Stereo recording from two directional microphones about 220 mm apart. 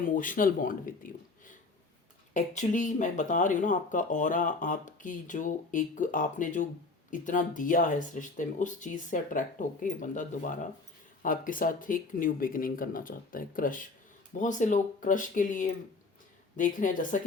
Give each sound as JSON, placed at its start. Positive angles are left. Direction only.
{"t": 0.0, "sound": "speech", "side_deg": 35}